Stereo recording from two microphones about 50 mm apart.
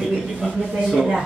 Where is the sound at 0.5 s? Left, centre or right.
Centre.